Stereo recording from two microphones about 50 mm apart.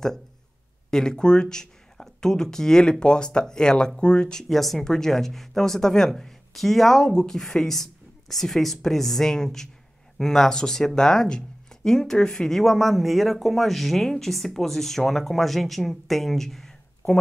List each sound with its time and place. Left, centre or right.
0.8 s speech: centre
4.5 s speech: centre